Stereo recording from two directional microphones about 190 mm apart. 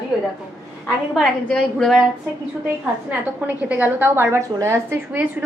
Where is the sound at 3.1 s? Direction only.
5° right (ahead or behind).